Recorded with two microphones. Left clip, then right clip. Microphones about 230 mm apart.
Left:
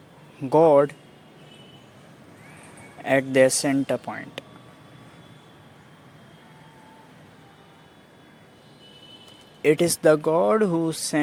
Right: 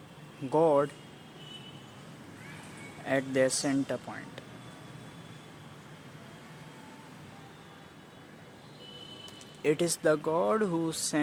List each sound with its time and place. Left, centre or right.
0.5 s speech: left
3.0 s speech: left
9.6 s speech: left